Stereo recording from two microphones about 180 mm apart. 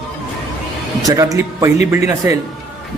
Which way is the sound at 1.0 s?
20° right (ahead or behind).